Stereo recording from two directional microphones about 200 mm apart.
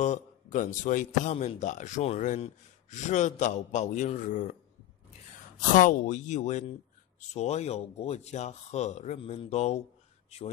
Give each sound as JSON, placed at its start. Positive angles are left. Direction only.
{"t": 0.0, "sound": "a man's voice", "side_deg": 40}
{"t": 5.6, "sound": "a man's voice", "side_deg": 40}